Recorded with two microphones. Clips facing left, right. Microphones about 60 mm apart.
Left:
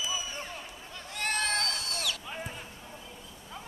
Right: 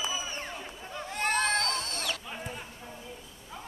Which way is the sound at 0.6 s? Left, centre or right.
Right.